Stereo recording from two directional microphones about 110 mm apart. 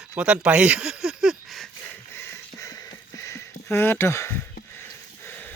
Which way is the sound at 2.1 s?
25° left (ahead or behind).